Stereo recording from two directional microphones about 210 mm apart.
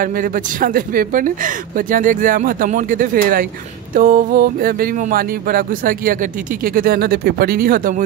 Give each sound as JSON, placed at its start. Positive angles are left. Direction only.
{"t": 0.0, "sound": "speech", "side_deg": -40}